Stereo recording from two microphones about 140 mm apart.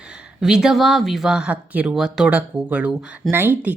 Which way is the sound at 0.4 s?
5° right (ahead or behind).